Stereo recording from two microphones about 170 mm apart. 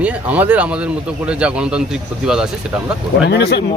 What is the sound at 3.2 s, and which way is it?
Speech, 75° left (ahead or behind).